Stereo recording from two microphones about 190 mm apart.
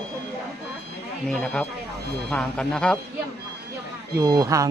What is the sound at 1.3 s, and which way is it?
Speech, 5° left (ahead or behind).